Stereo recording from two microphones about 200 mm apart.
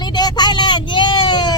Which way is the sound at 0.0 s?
20° left (ahead or behind).